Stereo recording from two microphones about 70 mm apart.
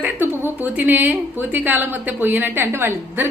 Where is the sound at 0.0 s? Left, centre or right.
Right.